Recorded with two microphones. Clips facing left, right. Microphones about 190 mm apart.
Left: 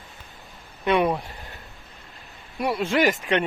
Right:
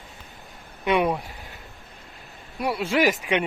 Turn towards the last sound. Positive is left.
turn(degrees=-10)  # may be behind; listen again after turning